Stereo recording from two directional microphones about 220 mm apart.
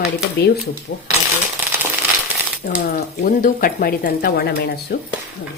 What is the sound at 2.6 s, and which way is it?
A woman's voice, 35° left (ahead or behind).